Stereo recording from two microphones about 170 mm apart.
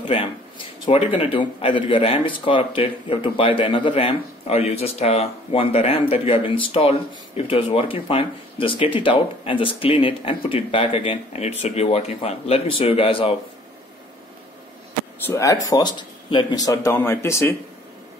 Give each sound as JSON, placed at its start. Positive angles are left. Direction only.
{"t": 0.1, "sound": "a man's voice", "side_deg": 30}
{"t": 15.2, "sound": "speech", "side_deg": 20}